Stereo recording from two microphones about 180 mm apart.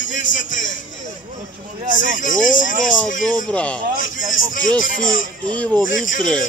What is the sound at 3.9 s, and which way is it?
A man's voice, 50° left (ahead or behind).